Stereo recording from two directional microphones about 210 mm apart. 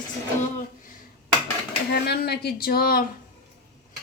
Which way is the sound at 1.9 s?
50° left (ahead or behind).